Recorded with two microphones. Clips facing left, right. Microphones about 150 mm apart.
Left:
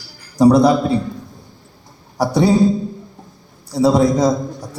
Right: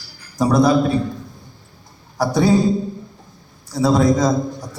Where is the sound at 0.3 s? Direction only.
35° left (ahead or behind).